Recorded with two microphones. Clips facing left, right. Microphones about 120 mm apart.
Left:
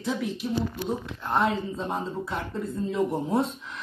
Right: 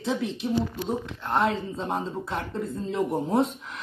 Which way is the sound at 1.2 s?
Centre (ahead or behind).